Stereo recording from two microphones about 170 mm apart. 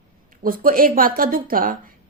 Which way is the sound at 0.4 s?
55° right (ahead or behind).